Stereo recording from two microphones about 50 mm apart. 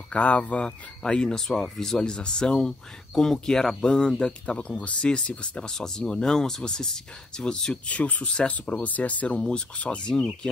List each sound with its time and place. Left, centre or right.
0.1 s speech: left
7.9 s speech: left